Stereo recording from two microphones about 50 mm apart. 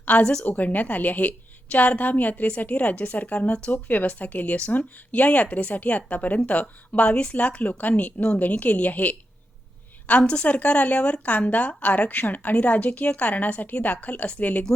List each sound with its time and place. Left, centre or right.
0.0 s a woman's voice: left
10.1 s a woman's voice: left